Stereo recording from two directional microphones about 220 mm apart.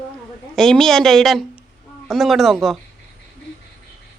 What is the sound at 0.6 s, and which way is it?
A woman's voice, centre (ahead or behind).